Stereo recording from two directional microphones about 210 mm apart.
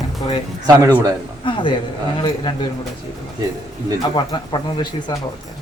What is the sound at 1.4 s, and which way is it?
Speech, 25° left (ahead or behind).